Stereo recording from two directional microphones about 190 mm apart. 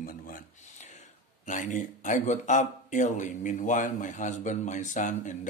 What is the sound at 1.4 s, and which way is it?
Speech, 40° left (ahead or behind).